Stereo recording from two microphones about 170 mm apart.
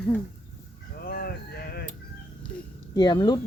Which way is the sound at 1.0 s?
60° left (ahead or behind).